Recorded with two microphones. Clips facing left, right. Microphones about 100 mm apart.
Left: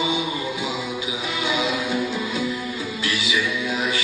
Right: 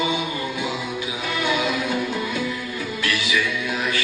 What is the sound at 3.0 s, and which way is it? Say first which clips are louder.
Music: right 1 dB; 15° left (ahead or behind).